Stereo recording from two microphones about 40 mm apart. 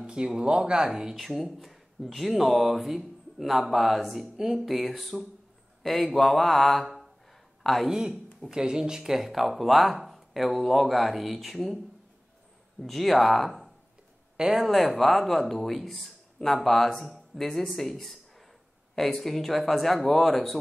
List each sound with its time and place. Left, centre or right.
0.0 s speech: right
1.1 s speech: centre
5.8 s a sound: centre
6.1 s mantra: centre
7.6 s speech: centre
8.1 s speech: centre
12.8 s speech: centre
18.9 s speech: centre